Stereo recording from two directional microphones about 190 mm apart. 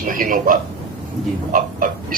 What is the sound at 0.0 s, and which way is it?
Speech, 45° right (ahead or behind).